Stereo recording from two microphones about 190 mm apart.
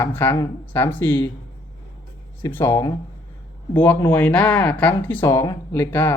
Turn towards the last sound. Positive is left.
turn(degrees=10)  # may be behind; listen again after turning